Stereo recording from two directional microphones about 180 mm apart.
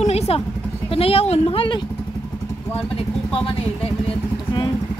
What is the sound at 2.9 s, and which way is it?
Speech, 30° left (ahead or behind).